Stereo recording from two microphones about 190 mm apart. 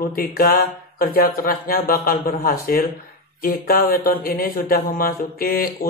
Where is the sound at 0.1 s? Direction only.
50° left (ahead or behind).